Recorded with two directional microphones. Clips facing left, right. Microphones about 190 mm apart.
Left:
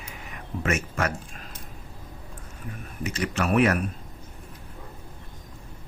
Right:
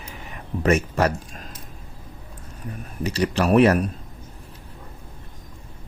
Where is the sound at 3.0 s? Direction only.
35° right (ahead or behind).